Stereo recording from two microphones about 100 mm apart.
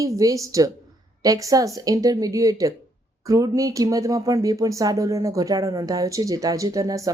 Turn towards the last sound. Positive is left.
turn(degrees=-35)  # may be behind; listen again after turning